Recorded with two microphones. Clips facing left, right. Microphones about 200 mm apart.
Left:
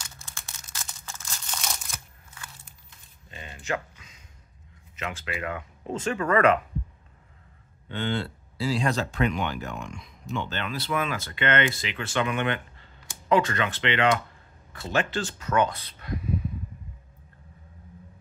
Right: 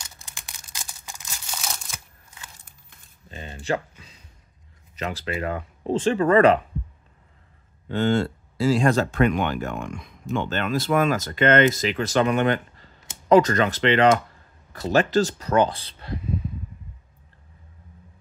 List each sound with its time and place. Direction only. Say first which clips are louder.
0.2 s crumpling: even; 15° right (ahead or behind)
3.3 s a sound: right 5 dB; 35° right (ahead or behind)
4.9 s speech: right 5 dB; 35° right (ahead or behind)
7.9 s speech: right 8 dB; 45° right (ahead or behind)